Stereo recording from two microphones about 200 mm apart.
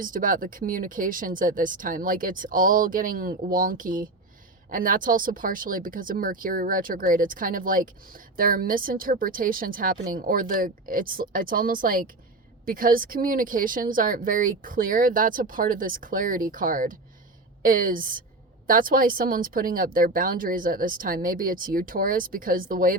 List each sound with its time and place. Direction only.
0.0 s speech: 45° right (ahead or behind)